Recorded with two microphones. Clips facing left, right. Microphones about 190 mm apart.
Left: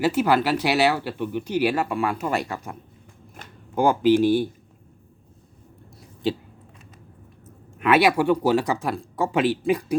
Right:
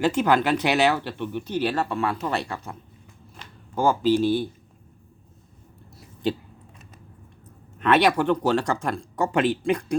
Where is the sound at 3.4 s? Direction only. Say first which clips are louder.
Left 2 dB; 50° left (ahead or behind).